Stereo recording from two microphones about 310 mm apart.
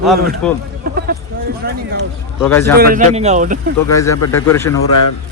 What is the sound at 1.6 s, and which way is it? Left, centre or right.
Run, right.